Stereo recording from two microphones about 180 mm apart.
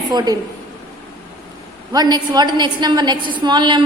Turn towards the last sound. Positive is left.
turn(degrees=-25)  # may be behind; listen again after turning